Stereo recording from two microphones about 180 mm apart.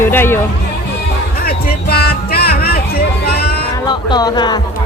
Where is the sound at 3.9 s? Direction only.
25° left (ahead or behind).